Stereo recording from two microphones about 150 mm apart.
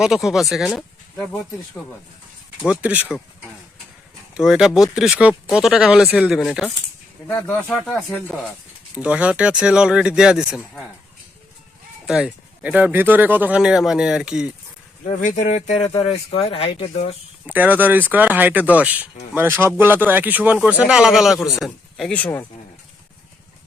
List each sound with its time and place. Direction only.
0.0 s speech: centre (ahead or behind)
1.1 s speech: 10° left (ahead or behind)
2.6 s speech: 10° right (ahead or behind)
4.4 s speech: 5° right (ahead or behind)
7.3 s speech: 15° left (ahead or behind)
9.0 s speech: 10° right (ahead or behind)
12.0 s speech: 5° right (ahead or behind)
15.0 s speech: 55° left (ahead or behind)
17.4 s speech: 10° right (ahead or behind); by 22.4 s 10° left (ahead or behind)